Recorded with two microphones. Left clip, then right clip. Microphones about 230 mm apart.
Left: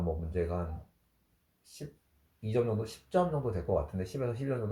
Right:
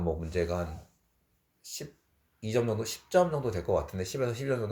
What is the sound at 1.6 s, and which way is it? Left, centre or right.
Speech, right.